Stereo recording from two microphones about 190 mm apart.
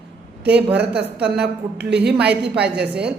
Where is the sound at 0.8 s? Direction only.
60° right (ahead or behind).